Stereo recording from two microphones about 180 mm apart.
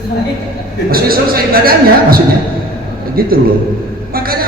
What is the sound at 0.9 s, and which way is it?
A man's voice, 55° right (ahead or behind).